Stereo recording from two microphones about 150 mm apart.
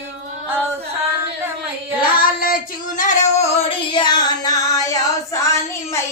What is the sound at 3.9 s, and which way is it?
Music, 30° left (ahead or behind).